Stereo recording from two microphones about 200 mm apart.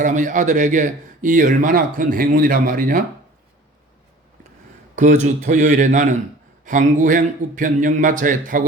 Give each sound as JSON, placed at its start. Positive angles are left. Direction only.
{"t": 0.0, "sound": "speech", "side_deg": -40}
{"t": 4.9, "sound": "speech", "side_deg": -35}